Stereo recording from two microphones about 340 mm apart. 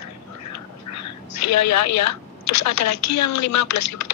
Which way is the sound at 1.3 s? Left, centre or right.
Left.